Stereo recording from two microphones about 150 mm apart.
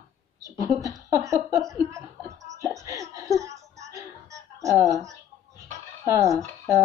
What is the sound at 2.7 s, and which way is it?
Laughter, 20° right (ahead or behind).